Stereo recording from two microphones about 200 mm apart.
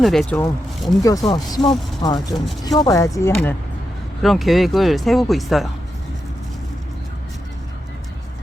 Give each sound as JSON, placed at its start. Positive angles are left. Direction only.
{"t": 0.0, "sound": "speech", "side_deg": 0}
{"t": 1.0, "sound": "speech", "side_deg": 15}
{"t": 2.1, "sound": "speech", "side_deg": 0}
{"t": 2.6, "sound": "speech", "side_deg": 20}
{"t": 4.2, "sound": "speech", "side_deg": 0}